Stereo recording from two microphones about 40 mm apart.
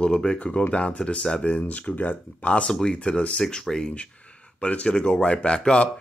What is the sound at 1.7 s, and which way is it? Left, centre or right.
Speech, left.